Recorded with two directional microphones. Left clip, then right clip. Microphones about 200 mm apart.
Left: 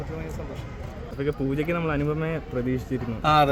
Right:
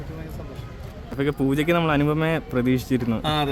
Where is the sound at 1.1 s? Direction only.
55° right (ahead or behind).